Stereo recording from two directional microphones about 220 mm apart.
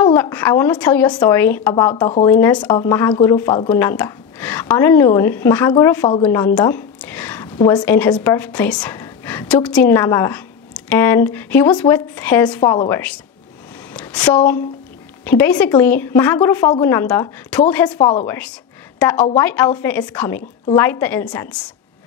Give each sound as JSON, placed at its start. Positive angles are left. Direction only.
{"t": 0.0, "sound": "a woman's voice", "side_deg": 10}
{"t": 6.2, "sound": "a sound", "side_deg": 10}
{"t": 7.8, "sound": "a woman's voice", "side_deg": 5}
{"t": 13.9, "sound": "a sound", "side_deg": 5}
{"t": 15.2, "sound": "speech", "side_deg": 10}
{"t": 17.9, "sound": "speech", "side_deg": 20}
{"t": 18.2, "sound": "a woman's voice", "side_deg": 10}